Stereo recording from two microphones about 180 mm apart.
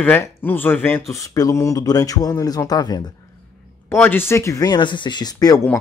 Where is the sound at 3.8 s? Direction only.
10° left (ahead or behind).